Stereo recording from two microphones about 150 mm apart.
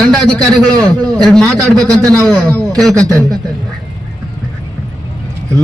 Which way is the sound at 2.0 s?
25° right (ahead or behind).